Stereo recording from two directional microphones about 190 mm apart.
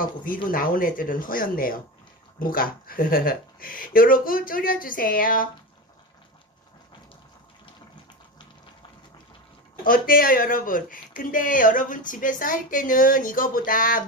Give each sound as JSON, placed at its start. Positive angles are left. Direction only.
{"t": 0.0, "sound": "speech", "side_deg": 45}
{"t": 9.8, "sound": "speech", "side_deg": 50}